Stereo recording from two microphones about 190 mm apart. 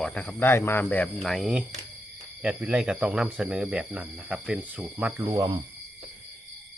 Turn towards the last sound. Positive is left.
turn(degrees=-20)  # may be behind; listen again after turning